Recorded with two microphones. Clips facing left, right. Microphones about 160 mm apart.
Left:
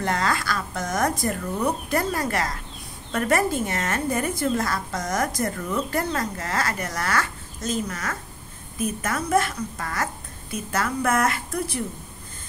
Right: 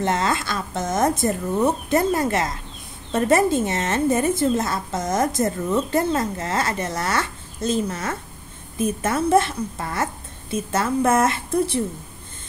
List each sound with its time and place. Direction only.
0.0 s speech: 25° right (ahead or behind)